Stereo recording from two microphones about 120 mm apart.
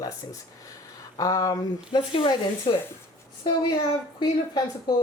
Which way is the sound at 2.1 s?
45° left (ahead or behind).